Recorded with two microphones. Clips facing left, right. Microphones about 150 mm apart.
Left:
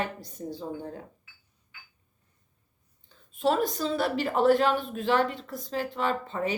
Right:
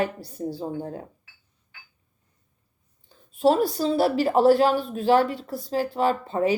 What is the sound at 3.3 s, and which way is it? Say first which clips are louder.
A woman's voice: right 5 dB; 35° right (ahead or behind).